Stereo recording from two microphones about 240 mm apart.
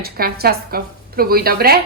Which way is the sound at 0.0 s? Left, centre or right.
Right.